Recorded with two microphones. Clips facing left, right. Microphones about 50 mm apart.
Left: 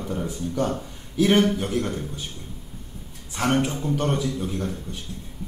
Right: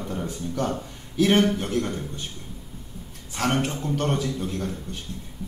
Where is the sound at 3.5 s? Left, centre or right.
Centre.